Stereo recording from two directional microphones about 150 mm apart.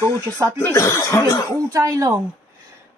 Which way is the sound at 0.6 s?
15° left (ahead or behind).